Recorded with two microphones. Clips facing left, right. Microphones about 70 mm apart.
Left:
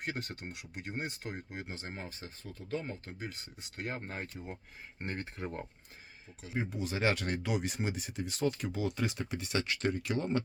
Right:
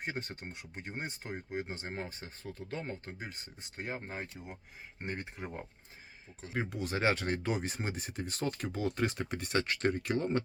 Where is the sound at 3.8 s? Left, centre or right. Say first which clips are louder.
Even; centre.